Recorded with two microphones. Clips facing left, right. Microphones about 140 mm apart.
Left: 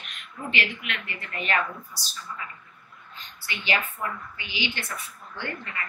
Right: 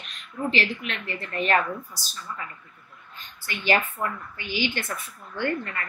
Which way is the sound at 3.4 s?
45° right (ahead or behind).